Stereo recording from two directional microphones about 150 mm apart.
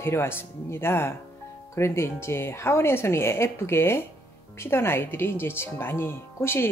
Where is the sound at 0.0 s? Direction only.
15° left (ahead or behind).